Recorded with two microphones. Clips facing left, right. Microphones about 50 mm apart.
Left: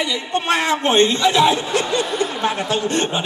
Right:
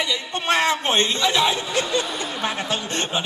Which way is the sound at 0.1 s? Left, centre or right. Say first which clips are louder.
Left 2 dB; left.